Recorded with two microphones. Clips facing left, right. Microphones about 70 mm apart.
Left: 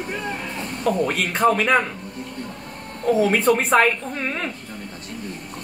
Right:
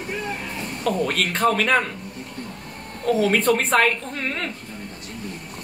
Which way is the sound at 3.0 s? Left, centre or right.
Centre.